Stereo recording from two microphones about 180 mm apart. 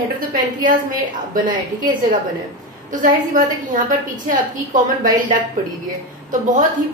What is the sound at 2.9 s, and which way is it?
Speech, 45° right (ahead or behind).